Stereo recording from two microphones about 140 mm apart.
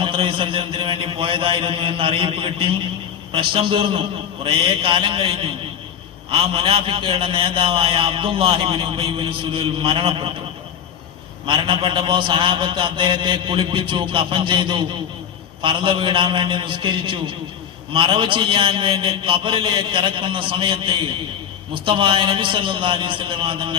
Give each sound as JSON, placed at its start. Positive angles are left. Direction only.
{"t": 0.0, "sound": "a man's voice", "side_deg": -40}
{"t": 11.4, "sound": "a man's voice", "side_deg": -35}